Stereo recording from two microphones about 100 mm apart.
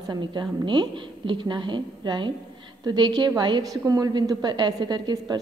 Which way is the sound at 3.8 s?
40° right (ahead or behind).